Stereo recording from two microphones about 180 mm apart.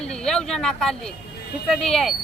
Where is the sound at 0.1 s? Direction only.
5° left (ahead or behind).